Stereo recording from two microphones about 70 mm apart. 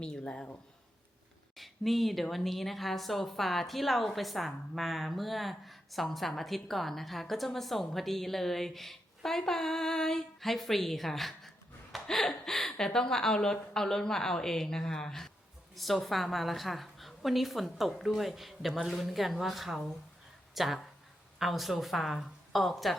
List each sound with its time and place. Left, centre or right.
0.0 s speech: centre
1.5 s a woman's voice: centre